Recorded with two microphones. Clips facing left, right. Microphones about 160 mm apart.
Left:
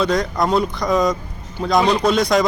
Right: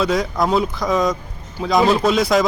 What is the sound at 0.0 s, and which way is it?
Speech, centre (ahead or behind).